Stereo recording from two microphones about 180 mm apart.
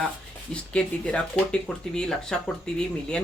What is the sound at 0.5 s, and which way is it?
Speech, 5° left (ahead or behind).